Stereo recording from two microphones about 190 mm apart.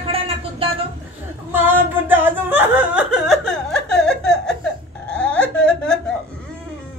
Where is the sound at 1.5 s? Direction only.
10° right (ahead or behind).